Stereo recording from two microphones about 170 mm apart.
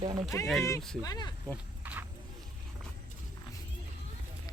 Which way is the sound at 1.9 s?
10° right (ahead or behind).